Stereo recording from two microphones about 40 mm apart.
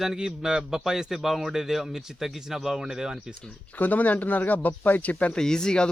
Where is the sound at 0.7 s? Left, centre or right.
Centre.